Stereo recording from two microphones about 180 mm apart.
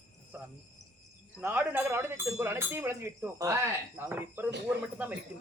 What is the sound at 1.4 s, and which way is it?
Speech, 10° right (ahead or behind).